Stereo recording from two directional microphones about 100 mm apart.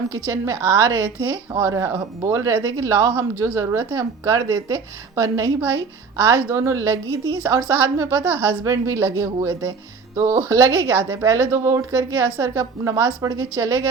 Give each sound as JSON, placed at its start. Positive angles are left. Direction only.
{"t": 0.3, "sound": "a woman's voice", "side_deg": -30}